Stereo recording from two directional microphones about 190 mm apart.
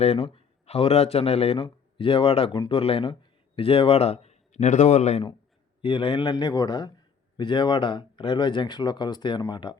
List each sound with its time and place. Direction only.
0.0 s a man's voice: 35° left (ahead or behind)
5.8 s speech: 25° left (ahead or behind)